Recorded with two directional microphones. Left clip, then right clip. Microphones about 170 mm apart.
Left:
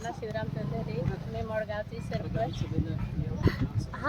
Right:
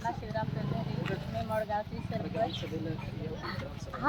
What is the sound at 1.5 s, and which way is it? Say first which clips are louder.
Speech: right 1 dB; 30° left (ahead or behind).